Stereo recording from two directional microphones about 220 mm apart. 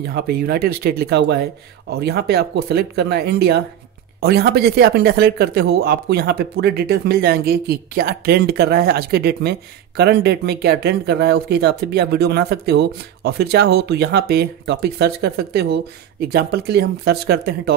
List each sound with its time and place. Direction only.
0.0 s speech: 45° right (ahead or behind)